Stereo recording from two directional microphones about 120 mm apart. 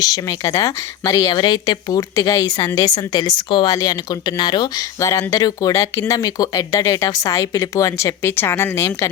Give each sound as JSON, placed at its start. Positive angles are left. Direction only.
{"t": 0.0, "sound": "speech", "side_deg": 30}
{"t": 1.4, "sound": "a woman's voice", "side_deg": 35}